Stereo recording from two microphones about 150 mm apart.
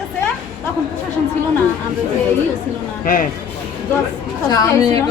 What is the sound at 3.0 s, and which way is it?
Speech, 65° left (ahead or behind).